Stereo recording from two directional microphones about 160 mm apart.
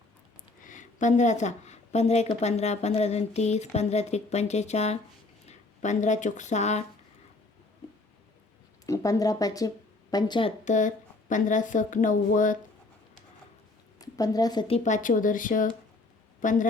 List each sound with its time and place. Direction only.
0.6 s a woman's voice: 55° left (ahead or behind)
8.9 s speech: 20° left (ahead or behind)
10.7 s a woman's voice: 50° left (ahead or behind)
14.0 s a woman's voice: 25° left (ahead or behind)
14.8 s a woman's voice: 55° left (ahead or behind)